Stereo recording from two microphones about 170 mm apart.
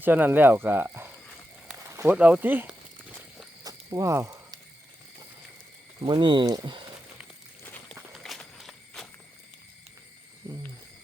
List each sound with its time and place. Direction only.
0.0 s speech: 10° right (ahead or behind)
3.6 s snake: 20° right (ahead or behind)
6.0 s speech: 25° right (ahead or behind)
8.1 s walk: centre (ahead or behind)